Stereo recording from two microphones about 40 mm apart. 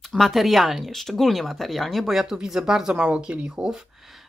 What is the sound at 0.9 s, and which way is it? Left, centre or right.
Speech, centre.